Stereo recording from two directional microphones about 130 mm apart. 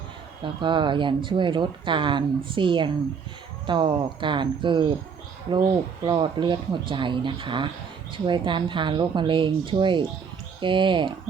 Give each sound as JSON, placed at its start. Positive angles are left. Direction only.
{"t": 0.4, "sound": "speech", "side_deg": -40}
{"t": 6.1, "sound": "speech", "side_deg": -35}